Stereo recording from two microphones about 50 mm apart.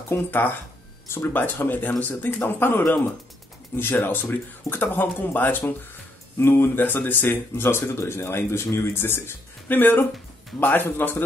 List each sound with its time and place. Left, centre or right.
0.3 s speech: left
1.0 s speech: left
1.3 s speech: left
6.3 s speech: left
8.9 s speech: left
9.7 s speech: left